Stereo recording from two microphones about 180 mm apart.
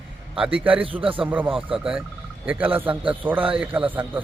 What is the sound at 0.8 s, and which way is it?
Speech, 30° right (ahead or behind).